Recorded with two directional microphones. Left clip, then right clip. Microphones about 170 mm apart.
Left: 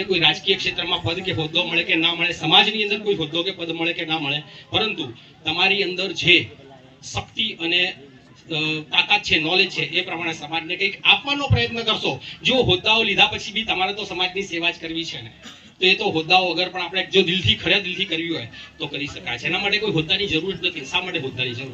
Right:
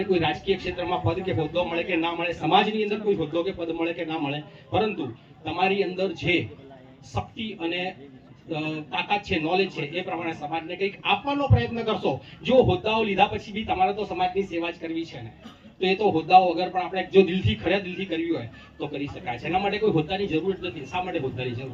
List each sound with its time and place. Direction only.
0.0 s a man's voice: 45° right (ahead or behind)